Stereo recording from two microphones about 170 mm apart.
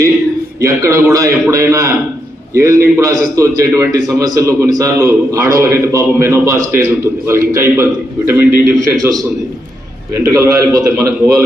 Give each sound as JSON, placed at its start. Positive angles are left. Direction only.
{"t": 0.6, "sound": "a man's voice", "side_deg": -20}
{"t": 10.2, "sound": "a man's voice", "side_deg": -20}